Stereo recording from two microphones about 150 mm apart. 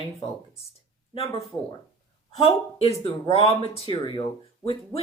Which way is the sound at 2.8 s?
40° left (ahead or behind).